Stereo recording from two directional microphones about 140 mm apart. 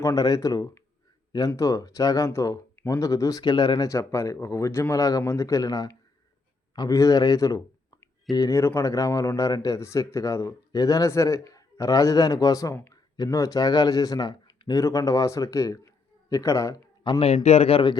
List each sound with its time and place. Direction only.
0.0 s speech: 25° left (ahead or behind)
17.2 s speech: 50° left (ahead or behind)